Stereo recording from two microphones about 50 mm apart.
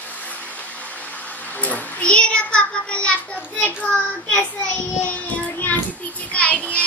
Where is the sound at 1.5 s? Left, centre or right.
Left.